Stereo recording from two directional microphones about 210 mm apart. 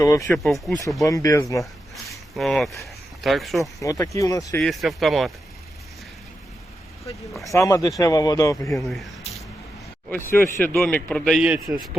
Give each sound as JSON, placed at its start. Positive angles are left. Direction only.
{"t": 0.0, "sound": "speech", "side_deg": 15}
{"t": 0.3, "sound": "speech", "side_deg": 0}
{"t": 1.0, "sound": "speech", "side_deg": 15}
{"t": 2.3, "sound": "speech", "side_deg": 0}
{"t": 3.8, "sound": "speech", "side_deg": 15}
{"t": 4.6, "sound": "speech", "side_deg": 0}
{"t": 7.4, "sound": "speech", "side_deg": 15}
{"t": 8.7, "sound": "speech", "side_deg": 0}
{"t": 10.1, "sound": "speech", "side_deg": 10}